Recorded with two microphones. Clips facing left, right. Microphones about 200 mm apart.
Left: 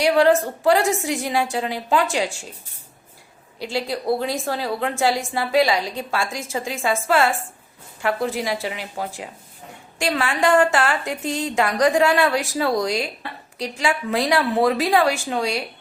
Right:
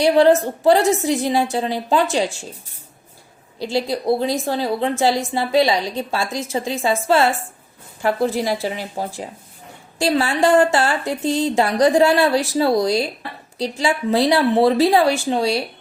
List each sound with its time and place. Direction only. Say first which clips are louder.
0.0 s a woman's voice: right 3 dB; 25° right (ahead or behind)
3.6 s a woman's voice: right 4 dB; 25° right (ahead or behind)
6.2 s a woman's voice: right 4 dB; 20° right (ahead or behind)